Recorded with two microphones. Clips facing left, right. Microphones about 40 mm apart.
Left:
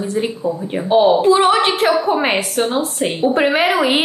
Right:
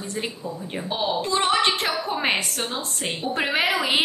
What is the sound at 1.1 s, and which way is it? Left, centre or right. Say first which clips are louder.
A woman's voice: left 9 dB; centre.